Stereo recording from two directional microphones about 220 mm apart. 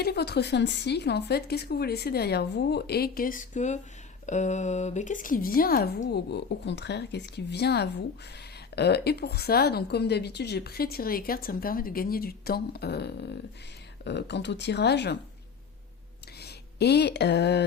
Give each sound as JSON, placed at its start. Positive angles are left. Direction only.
{"t": 0.0, "sound": "a woman's voice", "side_deg": 45}
{"t": 16.4, "sound": "speech", "side_deg": 50}